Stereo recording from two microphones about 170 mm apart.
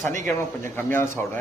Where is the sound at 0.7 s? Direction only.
15° left (ahead or behind).